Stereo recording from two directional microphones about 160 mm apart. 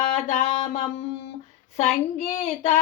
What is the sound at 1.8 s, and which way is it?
Speech, 45° left (ahead or behind).